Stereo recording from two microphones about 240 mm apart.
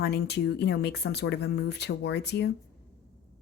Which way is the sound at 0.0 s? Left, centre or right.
Left.